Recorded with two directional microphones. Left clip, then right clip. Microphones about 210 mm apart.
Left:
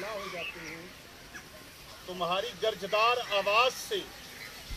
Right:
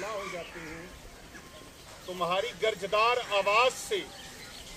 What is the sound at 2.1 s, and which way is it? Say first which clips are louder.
Speech: right 2 dB; 20° right (ahead or behind).